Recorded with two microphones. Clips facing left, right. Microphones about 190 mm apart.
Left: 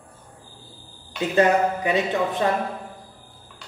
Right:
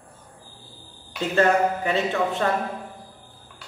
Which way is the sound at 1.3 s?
15° left (ahead or behind).